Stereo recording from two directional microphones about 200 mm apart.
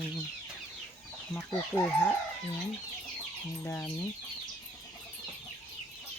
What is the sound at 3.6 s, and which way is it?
Speech, 10° left (ahead or behind).